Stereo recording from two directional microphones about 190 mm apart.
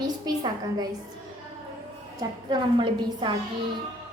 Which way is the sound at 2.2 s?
20° right (ahead or behind).